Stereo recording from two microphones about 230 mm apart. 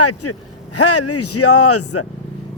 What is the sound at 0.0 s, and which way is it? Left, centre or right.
Speech, left.